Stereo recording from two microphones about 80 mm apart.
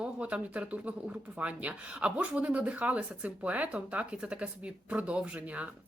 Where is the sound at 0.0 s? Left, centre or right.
Centre.